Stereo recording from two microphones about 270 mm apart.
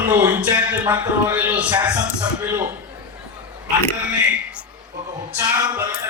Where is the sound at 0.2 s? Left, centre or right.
Centre.